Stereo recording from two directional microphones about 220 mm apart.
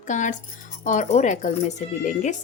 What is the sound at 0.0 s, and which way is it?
Music, 35° left (ahead or behind).